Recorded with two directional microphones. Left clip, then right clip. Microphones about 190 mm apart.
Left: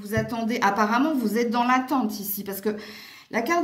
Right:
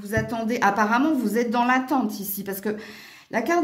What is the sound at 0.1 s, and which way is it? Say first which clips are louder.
A woman's voice: right 1 dB; 45° right (ahead or behind).